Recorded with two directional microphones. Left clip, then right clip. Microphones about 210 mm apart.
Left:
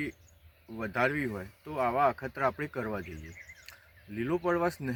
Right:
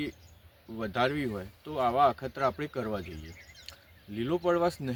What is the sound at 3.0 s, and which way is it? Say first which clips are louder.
Speech: even; 10° right (ahead or behind).